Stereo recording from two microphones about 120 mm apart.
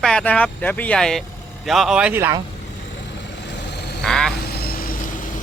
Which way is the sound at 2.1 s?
20° right (ahead or behind).